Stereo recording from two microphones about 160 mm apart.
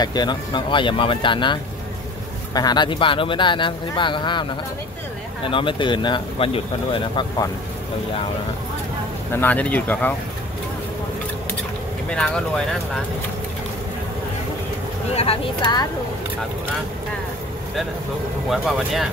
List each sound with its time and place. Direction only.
0.0 s speech: 25° left (ahead or behind)
9.3 s speech: 10° left (ahead or behind)
12.1 s speech: 5° left (ahead or behind)
15.1 s speech: 35° left (ahead or behind)